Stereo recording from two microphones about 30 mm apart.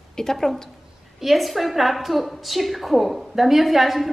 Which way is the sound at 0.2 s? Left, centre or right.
Centre.